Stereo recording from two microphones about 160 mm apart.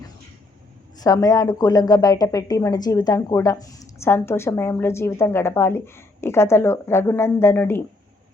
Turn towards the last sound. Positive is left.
turn(degrees=15)  # may be behind; listen again after turning